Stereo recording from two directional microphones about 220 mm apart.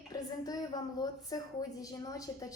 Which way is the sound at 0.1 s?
15° left (ahead or behind).